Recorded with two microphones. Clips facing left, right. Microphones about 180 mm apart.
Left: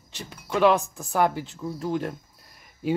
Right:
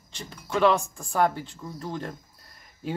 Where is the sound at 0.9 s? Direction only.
5° left (ahead or behind).